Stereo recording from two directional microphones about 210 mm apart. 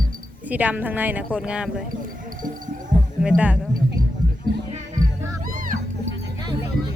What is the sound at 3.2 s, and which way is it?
Speech, 5° right (ahead or behind).